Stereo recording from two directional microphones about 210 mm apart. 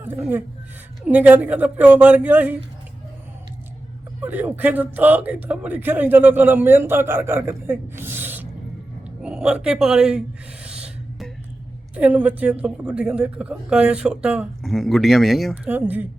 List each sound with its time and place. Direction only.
0.0 s speech: 10° right (ahead or behind)
4.2 s speech: 10° right (ahead or behind)
9.2 s gasp: 5° right (ahead or behind)
11.9 s speech: 5° right (ahead or behind)